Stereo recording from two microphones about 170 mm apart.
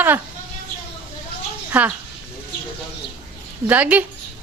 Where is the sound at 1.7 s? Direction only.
10° right (ahead or behind).